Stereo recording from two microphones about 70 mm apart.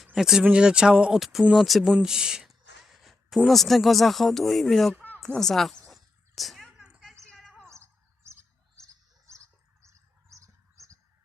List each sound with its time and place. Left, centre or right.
0.0 s speech: centre
5.4 s a sound: centre
7.7 s chirp: right
9.8 s bird: right